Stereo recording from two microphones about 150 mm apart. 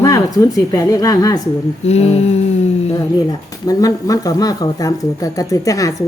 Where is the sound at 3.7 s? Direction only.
25° left (ahead or behind).